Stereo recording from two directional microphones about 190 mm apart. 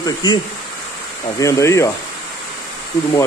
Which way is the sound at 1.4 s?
15° left (ahead or behind).